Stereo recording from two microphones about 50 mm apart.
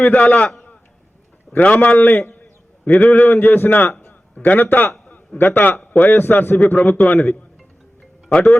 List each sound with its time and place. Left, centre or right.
0.0 s a man's voice: left
1.7 s a man's voice: left
3.9 s a sound: centre
4.4 s a man's voice: left